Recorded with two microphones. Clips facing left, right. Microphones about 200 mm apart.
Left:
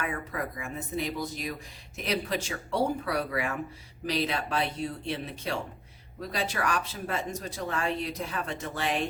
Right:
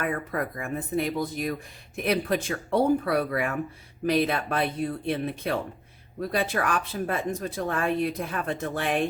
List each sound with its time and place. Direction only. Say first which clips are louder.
0.0 s speech: right 5 dB; 55° right (ahead or behind)